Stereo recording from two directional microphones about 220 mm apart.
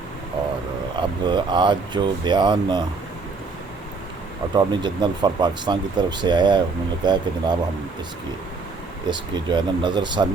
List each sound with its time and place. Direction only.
0.9 s speech: 20° right (ahead or behind)
4.5 s speech: 20° right (ahead or behind)
9.0 s speech: 20° right (ahead or behind)